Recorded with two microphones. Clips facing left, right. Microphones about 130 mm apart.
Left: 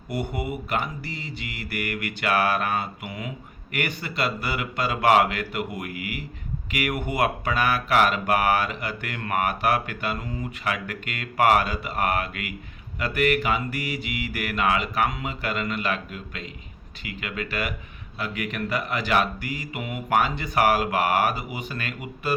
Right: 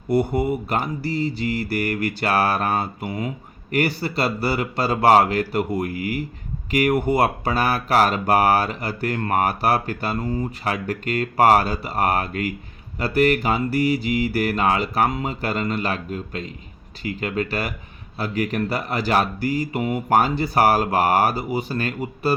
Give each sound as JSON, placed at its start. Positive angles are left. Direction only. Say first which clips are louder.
{"t": 0.1, "sound": "mantra", "louder": "right 9 dB", "side_deg": -35}